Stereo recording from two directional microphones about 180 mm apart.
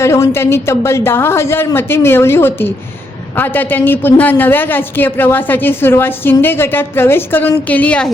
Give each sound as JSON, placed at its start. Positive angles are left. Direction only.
{"t": 0.0, "sound": "speech", "side_deg": 15}